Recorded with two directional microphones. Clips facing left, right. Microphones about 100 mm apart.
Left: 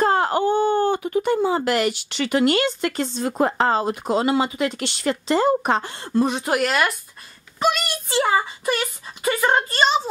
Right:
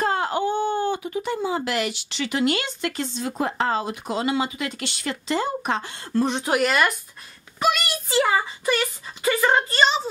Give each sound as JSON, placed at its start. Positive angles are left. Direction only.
{"t": 0.0, "sound": "speech", "side_deg": 45}
{"t": 6.1, "sound": "a woman's voice", "side_deg": 10}